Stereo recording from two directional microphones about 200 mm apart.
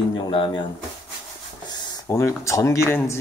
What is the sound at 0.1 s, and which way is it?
Speech, 25° left (ahead or behind).